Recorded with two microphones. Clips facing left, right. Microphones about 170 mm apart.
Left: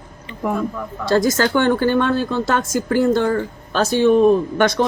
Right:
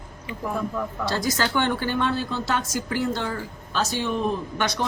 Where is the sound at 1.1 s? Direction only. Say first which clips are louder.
Left 10 dB; 45° left (ahead or behind).